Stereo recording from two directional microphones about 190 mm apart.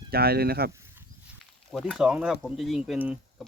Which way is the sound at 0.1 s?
55° right (ahead or behind).